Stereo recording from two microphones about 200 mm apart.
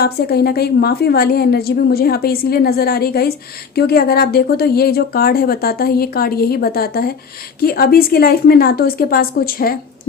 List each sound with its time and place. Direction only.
0.0 s a woman's voice: 50° left (ahead or behind)